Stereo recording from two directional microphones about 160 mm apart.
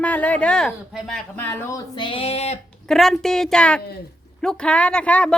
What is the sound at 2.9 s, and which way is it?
Speech, centre (ahead or behind).